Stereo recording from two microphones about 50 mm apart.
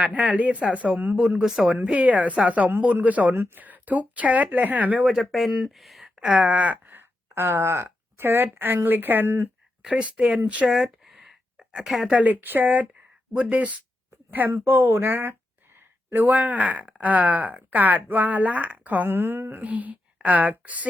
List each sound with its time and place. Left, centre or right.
0.0 s speech: right
1.4 s speech: centre
1.8 s speech: right
3.3 s speech: right
3.6 s speech: right
5.0 s speech: centre
6.1 s a sound: right
7.3 s speech: right
8.2 s speech: right
9.8 s speech: right
11.1 s a sound: centre
12.1 s speech: right
14.3 s speech: right
19.0 s speech: right